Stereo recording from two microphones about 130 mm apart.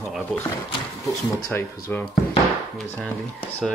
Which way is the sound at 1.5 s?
20° left (ahead or behind).